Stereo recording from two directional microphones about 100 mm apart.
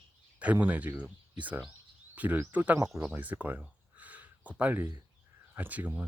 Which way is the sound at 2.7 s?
30° right (ahead or behind).